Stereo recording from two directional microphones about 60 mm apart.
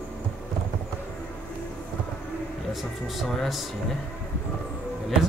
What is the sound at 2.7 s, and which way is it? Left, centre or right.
Speech, centre.